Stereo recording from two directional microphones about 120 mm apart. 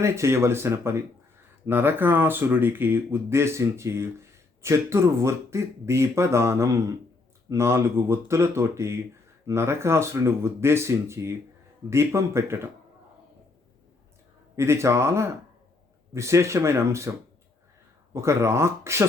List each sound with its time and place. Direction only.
0.0 s speech: 25° right (ahead or behind)
14.5 s speech: 20° right (ahead or behind)